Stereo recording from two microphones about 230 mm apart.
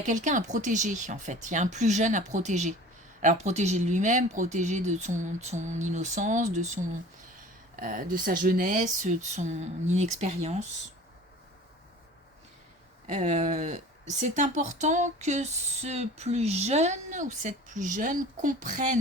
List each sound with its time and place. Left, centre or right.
0.0 s speech: right
13.1 s speech: right